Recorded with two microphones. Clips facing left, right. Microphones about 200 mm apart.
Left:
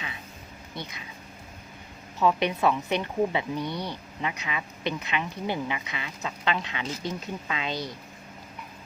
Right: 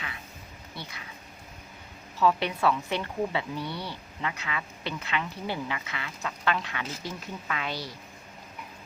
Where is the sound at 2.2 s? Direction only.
20° left (ahead or behind).